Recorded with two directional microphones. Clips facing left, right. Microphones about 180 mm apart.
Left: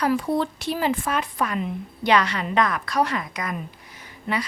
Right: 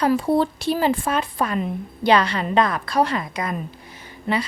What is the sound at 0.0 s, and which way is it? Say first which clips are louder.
A woman's voice: right 4 dB; 30° right (ahead or behind).